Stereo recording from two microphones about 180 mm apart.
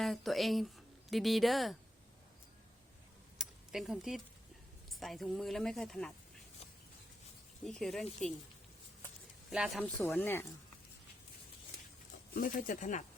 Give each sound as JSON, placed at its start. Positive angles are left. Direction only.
{"t": 0.0, "sound": "speech", "side_deg": 0}
{"t": 3.3, "sound": "a sound", "side_deg": -5}
{"t": 4.9, "sound": "speech", "side_deg": 0}
{"t": 7.6, "sound": "speech", "side_deg": 0}
{"t": 9.5, "sound": "speech", "side_deg": -5}
{"t": 9.8, "sound": "speech", "side_deg": 10}
{"t": 12.3, "sound": "speech", "side_deg": 50}